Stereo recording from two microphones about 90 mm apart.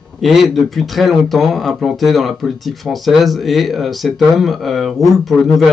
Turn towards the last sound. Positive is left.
turn(degrees=0)  # may be behind; listen again after turning